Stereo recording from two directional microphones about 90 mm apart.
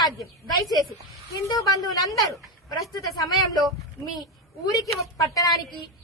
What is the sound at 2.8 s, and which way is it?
Speech, 40° left (ahead or behind).